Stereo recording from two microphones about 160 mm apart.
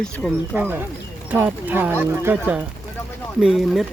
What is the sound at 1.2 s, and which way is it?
Speech, 10° right (ahead or behind).